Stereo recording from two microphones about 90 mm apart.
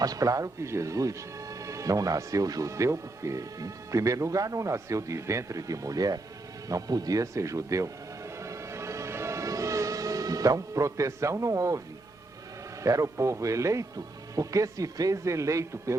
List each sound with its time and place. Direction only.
0.0 s speech: 40° right (ahead or behind)
6.7 s music: 40° right (ahead or behind)
12.8 s speech: 35° right (ahead or behind)